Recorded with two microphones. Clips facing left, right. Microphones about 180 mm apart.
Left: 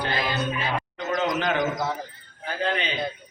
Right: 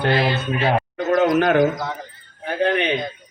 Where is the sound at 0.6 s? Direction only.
60° right (ahead or behind).